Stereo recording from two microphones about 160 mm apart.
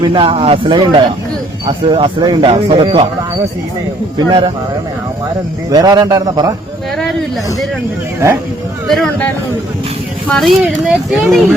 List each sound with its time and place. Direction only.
0.0 s a man's voice: 35° right (ahead or behind)
4.2 s a man's voice: 30° right (ahead or behind)
5.7 s a man's voice: 25° right (ahead or behind)
6.9 s a sound: 5° left (ahead or behind)
8.9 s speech: centre (ahead or behind)